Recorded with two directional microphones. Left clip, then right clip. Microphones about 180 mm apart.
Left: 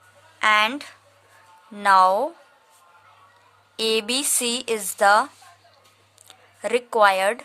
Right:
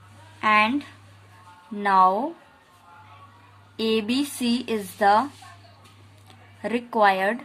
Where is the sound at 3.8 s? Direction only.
45° left (ahead or behind).